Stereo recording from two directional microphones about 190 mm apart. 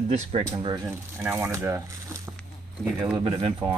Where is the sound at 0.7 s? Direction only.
10° right (ahead or behind).